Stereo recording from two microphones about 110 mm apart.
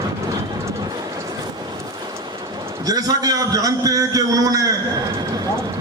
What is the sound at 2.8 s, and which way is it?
A man's voice, 35° right (ahead or behind).